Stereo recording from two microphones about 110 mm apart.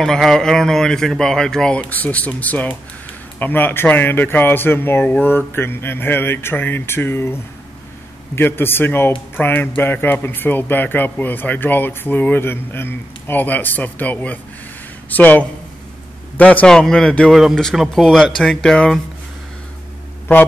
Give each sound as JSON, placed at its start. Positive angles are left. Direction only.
{"t": 0.0, "sound": "speech", "side_deg": 5}
{"t": 8.4, "sound": "speech", "side_deg": 20}